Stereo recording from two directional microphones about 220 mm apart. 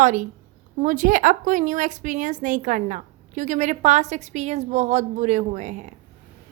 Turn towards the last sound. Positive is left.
turn(degrees=-35)  # may be behind; listen again after turning